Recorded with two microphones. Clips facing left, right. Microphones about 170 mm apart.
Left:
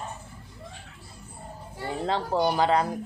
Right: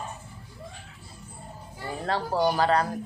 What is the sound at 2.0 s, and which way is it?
Speech, 20° left (ahead or behind).